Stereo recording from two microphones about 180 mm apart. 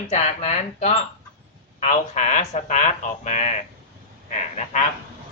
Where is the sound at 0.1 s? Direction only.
40° left (ahead or behind).